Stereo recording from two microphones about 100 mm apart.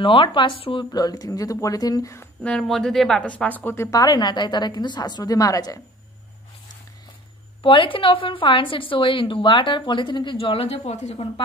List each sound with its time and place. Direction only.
0.0 s a woman's voice: 60° left (ahead or behind)
0.9 s speech: 40° left (ahead or behind)
2.4 s a woman's voice: 5° left (ahead or behind); by 4.0 s 25° left (ahead or behind)
4.0 s a woman's voice: 45° left (ahead or behind)
7.6 s a woman's voice: 60° left (ahead or behind)
10.3 s speech: 70° left (ahead or behind); by 11.4 s 90° left